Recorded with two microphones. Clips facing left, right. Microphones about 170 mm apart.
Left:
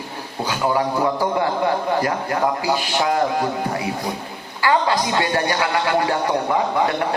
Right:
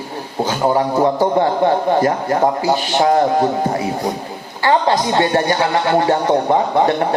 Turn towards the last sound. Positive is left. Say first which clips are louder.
# right 5 dB
turn(degrees=-35)  # may be behind; listen again after turning